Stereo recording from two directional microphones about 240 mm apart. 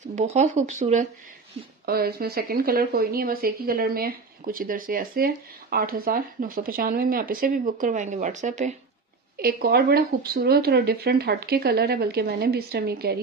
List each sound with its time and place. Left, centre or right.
0.0 s speech: right
1.9 s speech: right